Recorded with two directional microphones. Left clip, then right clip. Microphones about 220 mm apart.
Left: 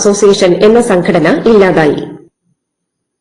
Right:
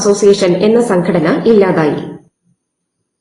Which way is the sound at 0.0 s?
35° left (ahead or behind).